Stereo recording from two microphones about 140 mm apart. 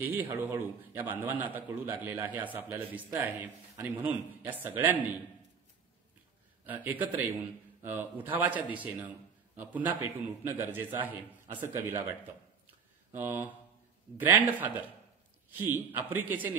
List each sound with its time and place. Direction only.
0.0 s a man's voice: 15° right (ahead or behind)
6.6 s a man's voice: 10° right (ahead or behind)
13.1 s a man's voice: 15° right (ahead or behind)